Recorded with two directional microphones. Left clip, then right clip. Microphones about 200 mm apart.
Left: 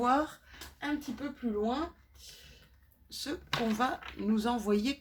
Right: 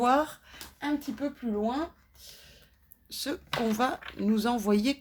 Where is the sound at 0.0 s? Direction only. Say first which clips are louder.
Right 4 dB; 55° right (ahead or behind).